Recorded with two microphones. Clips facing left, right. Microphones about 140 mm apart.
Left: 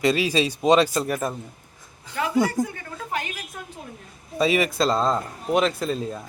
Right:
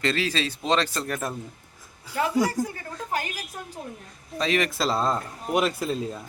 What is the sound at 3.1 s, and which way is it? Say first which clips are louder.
Speech: even; 35° right (ahead or behind).